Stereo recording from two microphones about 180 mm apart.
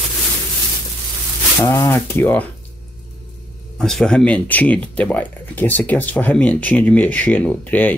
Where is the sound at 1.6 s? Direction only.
15° left (ahead or behind).